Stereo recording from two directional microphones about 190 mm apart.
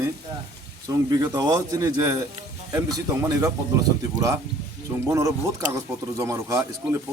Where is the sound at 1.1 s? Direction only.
20° right (ahead or behind).